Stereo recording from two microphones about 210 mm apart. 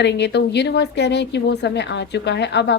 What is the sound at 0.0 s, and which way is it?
Speech, 55° left (ahead or behind).